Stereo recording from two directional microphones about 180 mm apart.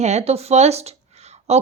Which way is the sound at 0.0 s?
40° right (ahead or behind).